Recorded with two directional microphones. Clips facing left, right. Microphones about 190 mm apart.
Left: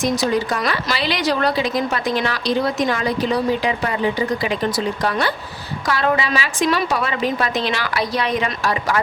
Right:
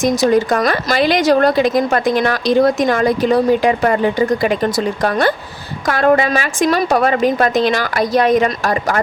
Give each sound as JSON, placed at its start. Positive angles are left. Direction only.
{"t": 0.0, "sound": "a woman's voice", "side_deg": -45}